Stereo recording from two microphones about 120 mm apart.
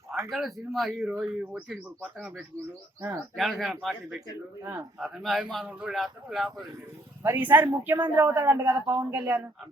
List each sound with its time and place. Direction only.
0.3 s a man's voice: centre (ahead or behind)
1.0 s a woman's voice: 10° right (ahead or behind)
3.3 s a man's voice: centre (ahead or behind)
7.2 s a woman's voice: 15° right (ahead or behind)